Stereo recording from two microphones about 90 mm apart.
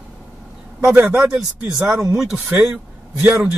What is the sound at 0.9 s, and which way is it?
Speech, 15° right (ahead or behind).